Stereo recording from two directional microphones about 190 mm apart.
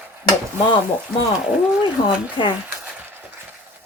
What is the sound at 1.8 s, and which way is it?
Speech, 25° left (ahead or behind).